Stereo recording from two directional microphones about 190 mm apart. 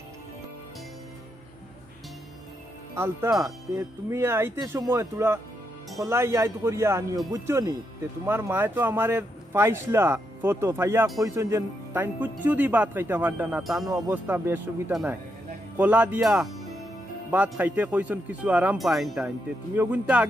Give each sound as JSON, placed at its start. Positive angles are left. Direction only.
{"t": 3.0, "sound": "speech", "side_deg": -15}
{"t": 13.8, "sound": "speech", "side_deg": -20}